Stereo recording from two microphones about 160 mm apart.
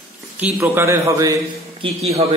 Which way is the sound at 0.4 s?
15° right (ahead or behind).